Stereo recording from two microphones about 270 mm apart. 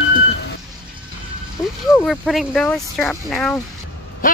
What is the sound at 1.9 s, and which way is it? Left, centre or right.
Speech, centre.